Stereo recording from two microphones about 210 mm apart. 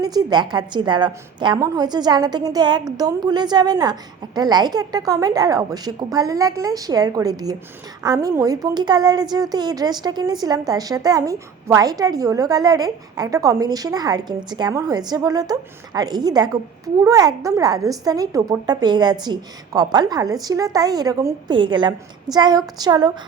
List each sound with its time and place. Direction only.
0.0 s a woman's voice: 20° right (ahead or behind)